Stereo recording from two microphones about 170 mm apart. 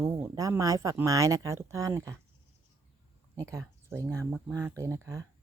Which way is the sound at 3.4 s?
15° right (ahead or behind).